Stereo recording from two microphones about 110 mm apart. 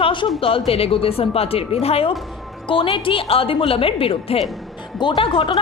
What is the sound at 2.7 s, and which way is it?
A woman's voice, 50° left (ahead or behind).